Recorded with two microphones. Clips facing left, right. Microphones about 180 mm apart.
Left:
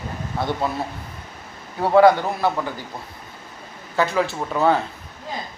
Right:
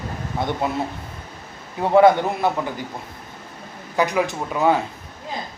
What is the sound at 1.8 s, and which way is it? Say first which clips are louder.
Speech: even; 20° right (ahead or behind).